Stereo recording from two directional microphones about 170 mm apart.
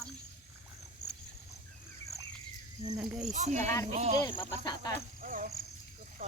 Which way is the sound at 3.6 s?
15° left (ahead or behind).